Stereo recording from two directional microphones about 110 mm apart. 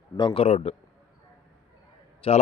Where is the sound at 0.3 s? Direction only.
70° left (ahead or behind).